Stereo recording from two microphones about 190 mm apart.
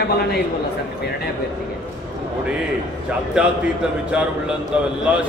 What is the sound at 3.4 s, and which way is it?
A man's voice, 5° right (ahead or behind).